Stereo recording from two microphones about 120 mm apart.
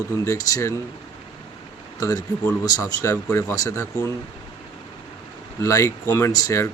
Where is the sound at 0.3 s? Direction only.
30° left (ahead or behind).